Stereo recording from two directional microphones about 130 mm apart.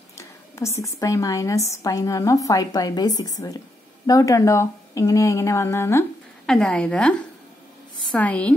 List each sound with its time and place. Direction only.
0.7 s a woman's voice: 25° left (ahead or behind)
6.4 s a woman's voice: 5° left (ahead or behind)